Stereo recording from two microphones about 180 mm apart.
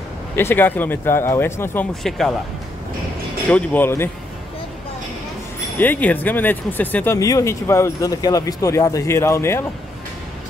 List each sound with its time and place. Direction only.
0.4 s speech: 10° left (ahead or behind)
3.4 s speech: 10° left (ahead or behind)
5.8 s speech: 10° left (ahead or behind)